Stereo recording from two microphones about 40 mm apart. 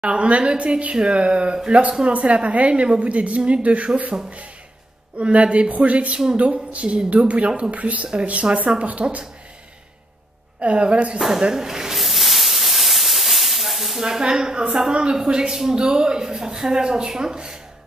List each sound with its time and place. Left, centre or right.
0.0 s a woman's voice: right
10.6 s a woman's voice: right
11.1 s a man's voice: centre
12.0 s hiss: centre
14.0 s a man's voice: centre